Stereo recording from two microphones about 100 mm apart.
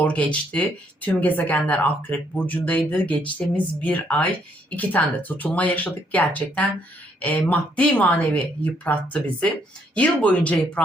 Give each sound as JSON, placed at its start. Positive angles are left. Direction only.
{"t": 0.0, "sound": "speech", "side_deg": 10}